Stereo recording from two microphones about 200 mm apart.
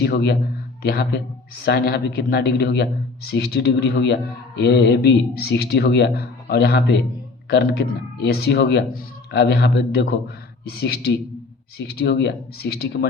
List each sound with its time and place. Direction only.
0.0 s speech: 55° left (ahead or behind)
11.9 s speech: 55° left (ahead or behind)